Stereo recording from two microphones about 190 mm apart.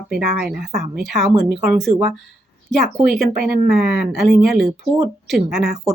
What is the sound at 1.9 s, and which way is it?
Speech, 25° right (ahead or behind).